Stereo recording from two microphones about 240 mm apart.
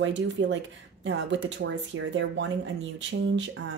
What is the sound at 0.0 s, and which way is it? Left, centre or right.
Speech, right.